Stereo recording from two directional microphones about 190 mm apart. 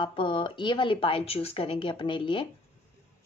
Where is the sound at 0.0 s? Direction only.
25° left (ahead or behind).